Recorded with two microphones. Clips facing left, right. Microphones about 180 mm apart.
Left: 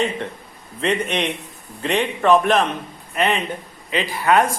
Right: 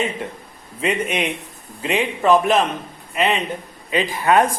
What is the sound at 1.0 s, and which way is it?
A man's voice, 5° right (ahead or behind).